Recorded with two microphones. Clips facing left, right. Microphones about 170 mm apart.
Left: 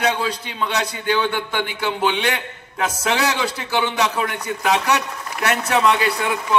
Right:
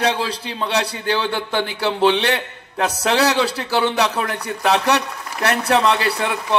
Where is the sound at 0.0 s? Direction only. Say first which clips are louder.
Right 1 dB; 35° right (ahead or behind).